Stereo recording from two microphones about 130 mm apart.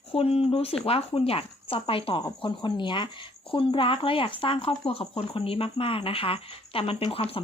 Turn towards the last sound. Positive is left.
turn(degrees=45)  # may be behind; listen again after turning